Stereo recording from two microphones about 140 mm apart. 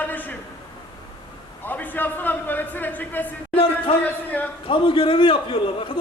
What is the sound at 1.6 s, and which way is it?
Speech, 10° left (ahead or behind).